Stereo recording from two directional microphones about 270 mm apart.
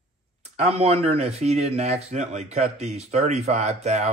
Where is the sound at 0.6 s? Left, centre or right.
Right.